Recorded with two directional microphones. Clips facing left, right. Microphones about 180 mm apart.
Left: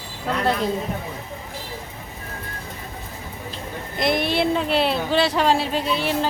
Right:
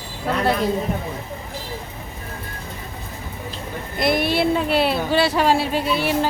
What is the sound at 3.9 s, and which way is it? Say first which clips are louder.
Speech: right 2 dB; 5° right (ahead or behind).